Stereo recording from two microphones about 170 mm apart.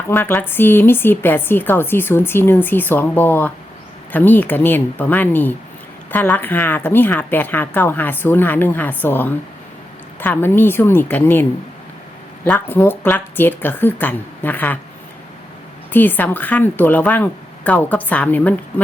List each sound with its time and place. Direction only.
0.1 s a woman's voice: 10° left (ahead or behind)
12.5 s a woman's voice: 10° left (ahead or behind)
15.9 s a woman's voice: 10° left (ahead or behind)